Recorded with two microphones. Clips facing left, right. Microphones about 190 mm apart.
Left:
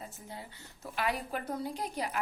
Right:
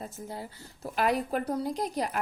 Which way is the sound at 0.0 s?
40° right (ahead or behind).